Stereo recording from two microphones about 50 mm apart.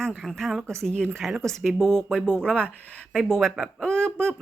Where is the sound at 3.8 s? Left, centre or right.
Centre.